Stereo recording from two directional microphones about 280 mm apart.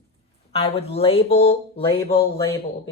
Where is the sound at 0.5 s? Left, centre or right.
Left.